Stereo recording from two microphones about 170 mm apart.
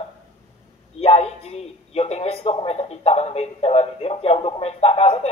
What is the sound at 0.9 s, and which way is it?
A man's voice, 35° left (ahead or behind).